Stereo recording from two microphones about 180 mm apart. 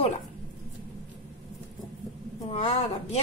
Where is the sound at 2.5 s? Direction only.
35° left (ahead or behind).